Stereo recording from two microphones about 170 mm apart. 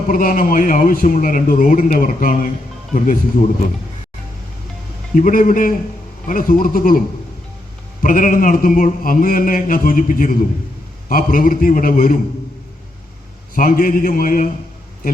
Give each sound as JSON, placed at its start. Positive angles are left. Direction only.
{"t": 0.1, "sound": "a man's voice", "side_deg": 55}
{"t": 5.1, "sound": "a man's voice", "side_deg": 55}
{"t": 8.0, "sound": "a man's voice", "side_deg": 55}
{"t": 13.6, "sound": "a man's voice", "side_deg": 55}